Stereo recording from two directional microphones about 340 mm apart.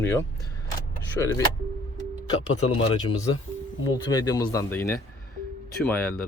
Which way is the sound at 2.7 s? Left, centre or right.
Centre.